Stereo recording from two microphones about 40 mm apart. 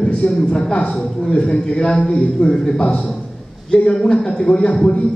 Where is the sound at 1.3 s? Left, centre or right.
Centre.